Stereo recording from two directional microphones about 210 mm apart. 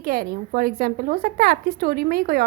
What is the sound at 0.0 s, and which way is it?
A woman's voice, 45° right (ahead or behind).